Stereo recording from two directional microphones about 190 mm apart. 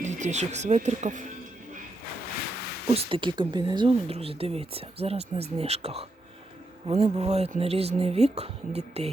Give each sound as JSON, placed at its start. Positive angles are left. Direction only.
{"t": 0.0, "sound": "a woman's voice", "side_deg": -40}
{"t": 2.9, "sound": "a woman's voice", "side_deg": -25}